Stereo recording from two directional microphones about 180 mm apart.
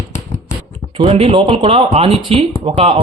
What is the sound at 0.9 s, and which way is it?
Speech, 30° right (ahead or behind).